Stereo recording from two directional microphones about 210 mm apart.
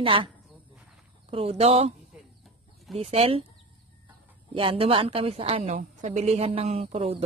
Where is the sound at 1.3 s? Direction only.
30° right (ahead or behind).